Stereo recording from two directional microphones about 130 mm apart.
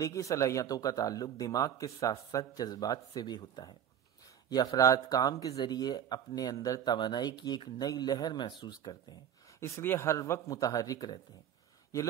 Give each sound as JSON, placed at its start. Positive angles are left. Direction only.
{"t": 0.0, "sound": "speech", "side_deg": 25}
{"t": 9.6, "sound": "speech", "side_deg": 20}